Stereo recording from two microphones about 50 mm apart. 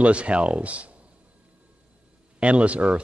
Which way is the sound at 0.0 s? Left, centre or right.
Right.